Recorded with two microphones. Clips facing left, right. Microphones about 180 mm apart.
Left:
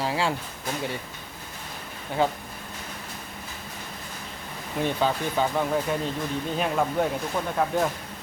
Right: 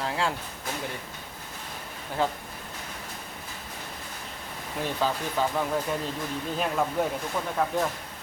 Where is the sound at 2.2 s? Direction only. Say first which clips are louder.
Left 3 dB; centre (ahead or behind).